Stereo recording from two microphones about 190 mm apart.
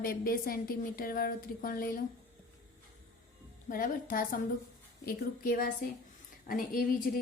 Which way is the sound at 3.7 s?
45° left (ahead or behind).